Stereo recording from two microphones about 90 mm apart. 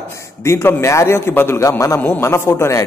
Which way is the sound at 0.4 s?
30° left (ahead or behind).